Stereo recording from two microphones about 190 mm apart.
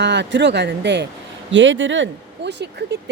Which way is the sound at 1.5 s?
75° right (ahead or behind).